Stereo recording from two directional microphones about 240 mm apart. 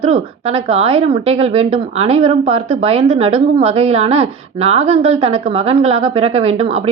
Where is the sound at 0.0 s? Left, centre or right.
Right.